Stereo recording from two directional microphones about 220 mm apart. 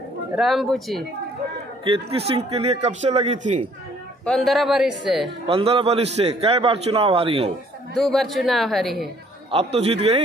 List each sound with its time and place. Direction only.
0.4 s a woman's voice: centre (ahead or behind)
1.9 s a man's voice: 25° right (ahead or behind)
4.3 s a woman's voice: centre (ahead or behind)
5.5 s a man's voice: 25° right (ahead or behind)
7.9 s a woman's voice: centre (ahead or behind)
9.5 s a man's voice: 25° right (ahead or behind)